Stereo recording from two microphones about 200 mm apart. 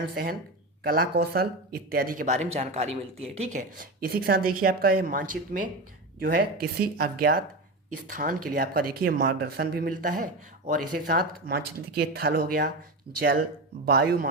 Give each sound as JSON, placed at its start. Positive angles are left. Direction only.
{"t": 0.0, "sound": "speech", "side_deg": -50}